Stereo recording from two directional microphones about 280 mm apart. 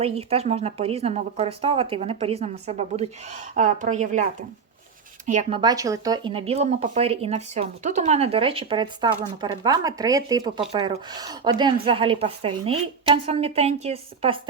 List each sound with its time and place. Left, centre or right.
0.0 s a woman's voice: right